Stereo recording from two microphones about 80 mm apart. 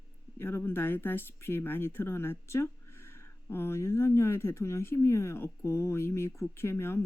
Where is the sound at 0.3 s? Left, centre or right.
Left.